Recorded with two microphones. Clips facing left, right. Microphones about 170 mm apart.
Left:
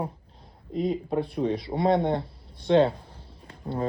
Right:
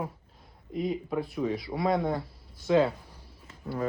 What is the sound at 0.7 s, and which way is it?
Speech, 30° left (ahead or behind).